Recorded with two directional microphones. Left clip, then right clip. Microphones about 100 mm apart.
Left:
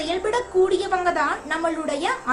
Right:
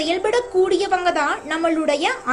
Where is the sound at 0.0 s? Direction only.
30° right (ahead or behind).